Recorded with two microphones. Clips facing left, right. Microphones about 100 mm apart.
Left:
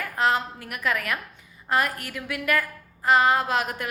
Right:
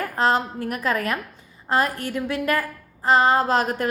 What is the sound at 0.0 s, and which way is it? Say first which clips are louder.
A woman's voice: right 3 dB; 35° right (ahead or behind).